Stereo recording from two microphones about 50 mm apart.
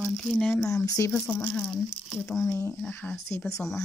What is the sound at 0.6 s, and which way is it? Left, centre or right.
Speech, left.